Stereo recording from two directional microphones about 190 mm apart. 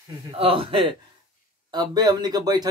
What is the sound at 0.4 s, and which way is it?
Speech, 30° right (ahead or behind).